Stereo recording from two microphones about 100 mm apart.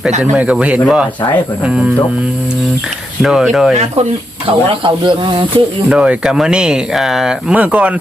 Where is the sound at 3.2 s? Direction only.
Centre (ahead or behind).